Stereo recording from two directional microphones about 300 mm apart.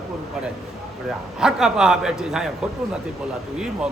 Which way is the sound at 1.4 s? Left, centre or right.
Centre.